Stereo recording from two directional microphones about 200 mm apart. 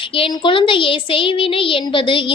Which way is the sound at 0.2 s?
25° left (ahead or behind).